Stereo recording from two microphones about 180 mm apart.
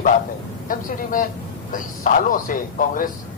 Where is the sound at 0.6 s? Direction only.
50° left (ahead or behind).